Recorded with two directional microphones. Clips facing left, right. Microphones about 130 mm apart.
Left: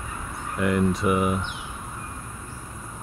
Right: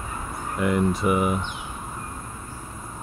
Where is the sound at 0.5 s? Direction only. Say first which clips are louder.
Even; 5° right (ahead or behind).